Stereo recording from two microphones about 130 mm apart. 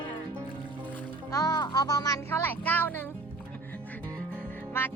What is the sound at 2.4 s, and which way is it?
Speech, 15° left (ahead or behind).